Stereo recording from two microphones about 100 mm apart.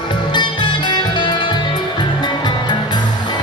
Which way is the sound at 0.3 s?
50° left (ahead or behind).